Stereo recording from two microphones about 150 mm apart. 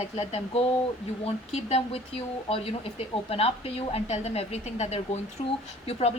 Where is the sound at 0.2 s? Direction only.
40° left (ahead or behind).